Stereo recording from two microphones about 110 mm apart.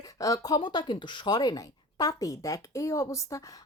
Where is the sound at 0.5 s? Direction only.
45° left (ahead or behind).